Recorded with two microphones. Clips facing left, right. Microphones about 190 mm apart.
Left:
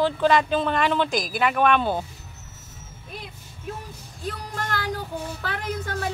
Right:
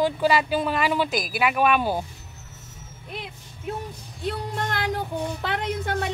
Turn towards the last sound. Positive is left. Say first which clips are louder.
# right 2 dB
turn(degrees=-20)  # may be behind; listen again after turning